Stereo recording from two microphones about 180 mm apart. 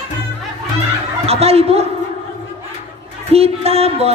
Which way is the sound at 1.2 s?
35° right (ahead or behind).